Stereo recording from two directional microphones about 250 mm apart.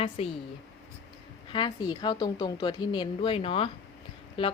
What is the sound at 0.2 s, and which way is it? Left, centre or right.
Speech, left.